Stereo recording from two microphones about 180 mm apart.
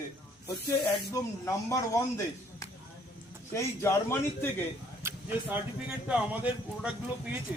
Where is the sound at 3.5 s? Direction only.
15° left (ahead or behind).